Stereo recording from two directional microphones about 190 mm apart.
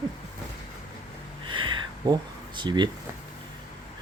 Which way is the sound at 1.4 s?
25° right (ahead or behind).